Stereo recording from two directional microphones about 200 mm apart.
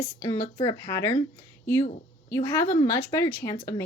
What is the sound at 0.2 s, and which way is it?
Speech, 15° left (ahead or behind).